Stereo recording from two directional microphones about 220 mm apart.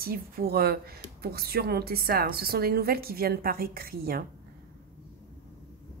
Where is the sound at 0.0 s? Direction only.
45° right (ahead or behind).